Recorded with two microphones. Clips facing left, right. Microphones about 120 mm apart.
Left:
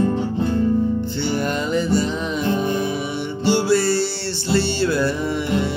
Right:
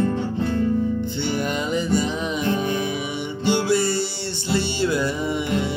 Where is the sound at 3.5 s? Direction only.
20° right (ahead or behind).